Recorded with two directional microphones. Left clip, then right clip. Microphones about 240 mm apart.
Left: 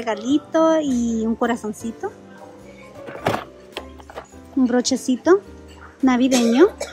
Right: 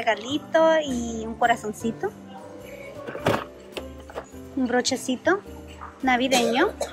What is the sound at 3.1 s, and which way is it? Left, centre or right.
Music, centre.